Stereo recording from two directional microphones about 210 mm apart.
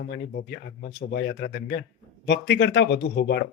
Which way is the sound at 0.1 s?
50° left (ahead or behind).